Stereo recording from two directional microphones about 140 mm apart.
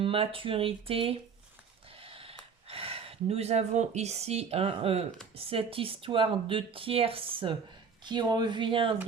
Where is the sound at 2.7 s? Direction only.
40° right (ahead or behind).